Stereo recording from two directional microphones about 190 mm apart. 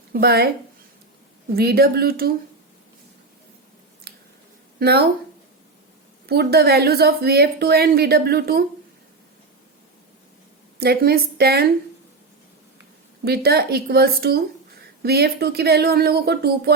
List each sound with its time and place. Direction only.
0.1 s a woman's voice: 55° right (ahead or behind)
1.5 s speech: 55° right (ahead or behind)
4.1 s scissors: 55° right (ahead or behind)
4.8 s a woman's voice: 55° right (ahead or behind)
6.2 s a woman's voice: 55° right (ahead or behind)
10.8 s a woman's voice: 55° right (ahead or behind)
13.2 s a woman's voice: 55° right (ahead or behind)